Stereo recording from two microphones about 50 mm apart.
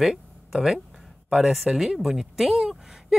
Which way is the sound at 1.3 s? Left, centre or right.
Centre.